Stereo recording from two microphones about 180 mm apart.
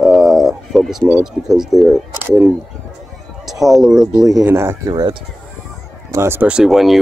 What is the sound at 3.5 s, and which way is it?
Speech, centre (ahead or behind).